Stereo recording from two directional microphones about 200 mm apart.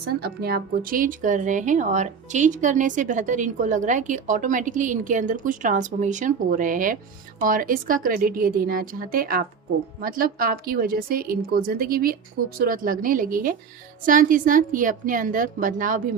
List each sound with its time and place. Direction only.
0.2 s a woman's voice: 50° right (ahead or behind)